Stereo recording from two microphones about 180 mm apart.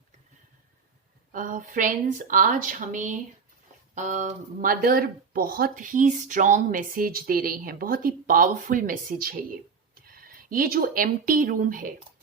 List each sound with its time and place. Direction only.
1.3 s speech: 45° right (ahead or behind)